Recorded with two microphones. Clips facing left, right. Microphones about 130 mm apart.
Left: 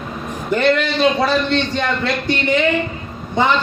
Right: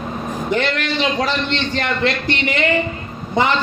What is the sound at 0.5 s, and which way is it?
A man's voice, 80° right.